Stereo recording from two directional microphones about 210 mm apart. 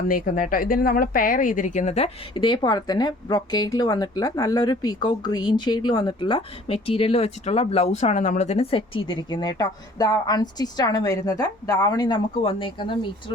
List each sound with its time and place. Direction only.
0.1 s speech: 40° left (ahead or behind); by 13.3 s 25° left (ahead or behind)